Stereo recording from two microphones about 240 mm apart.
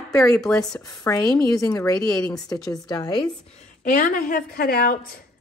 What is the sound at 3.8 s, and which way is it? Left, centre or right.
A woman's voice, left.